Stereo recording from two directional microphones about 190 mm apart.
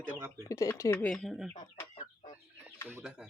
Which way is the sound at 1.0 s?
Centre (ahead or behind).